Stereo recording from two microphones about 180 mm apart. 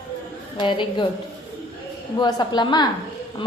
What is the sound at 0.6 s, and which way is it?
Speech, 25° left (ahead or behind).